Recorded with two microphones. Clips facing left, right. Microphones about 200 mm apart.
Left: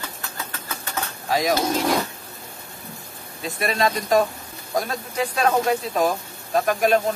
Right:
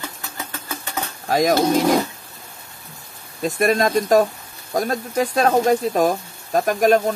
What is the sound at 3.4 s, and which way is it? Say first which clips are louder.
Speech: right 5 dB; 45° right (ahead or behind).